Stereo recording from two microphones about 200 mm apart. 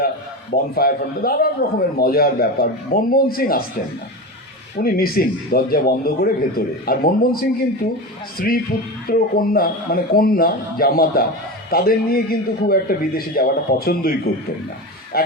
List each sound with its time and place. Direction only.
0.5 s a man's voice: 50° left (ahead or behind)
4.8 s a man's voice: 50° left (ahead or behind)